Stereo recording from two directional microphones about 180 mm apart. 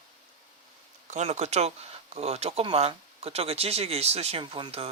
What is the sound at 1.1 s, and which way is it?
Speech, 40° right (ahead or behind).